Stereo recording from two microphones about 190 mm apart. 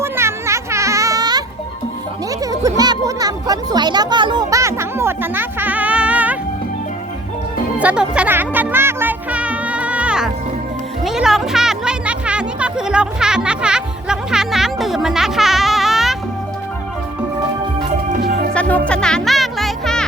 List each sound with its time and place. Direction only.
0.0 s music: 15° right (ahead or behind)
7.8 s music: 5° right (ahead or behind)
18.5 s music: 5° left (ahead or behind)